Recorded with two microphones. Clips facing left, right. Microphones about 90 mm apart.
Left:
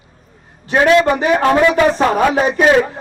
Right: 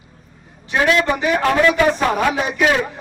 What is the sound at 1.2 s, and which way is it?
A man's voice, 35° left (ahead or behind).